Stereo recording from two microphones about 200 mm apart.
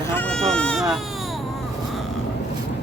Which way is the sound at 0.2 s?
5° left (ahead or behind).